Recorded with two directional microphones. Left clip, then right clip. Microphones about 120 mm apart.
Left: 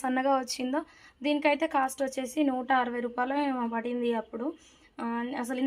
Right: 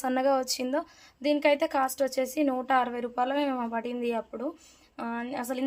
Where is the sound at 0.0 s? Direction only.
30° right (ahead or behind).